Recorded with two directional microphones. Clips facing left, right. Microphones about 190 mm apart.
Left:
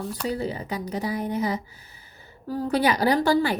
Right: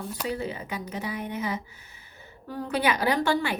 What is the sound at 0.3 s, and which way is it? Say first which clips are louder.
A woman's voice: left 3 dB; 35° left (ahead or behind).